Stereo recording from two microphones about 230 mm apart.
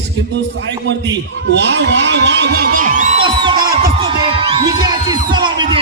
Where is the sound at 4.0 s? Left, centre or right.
Right.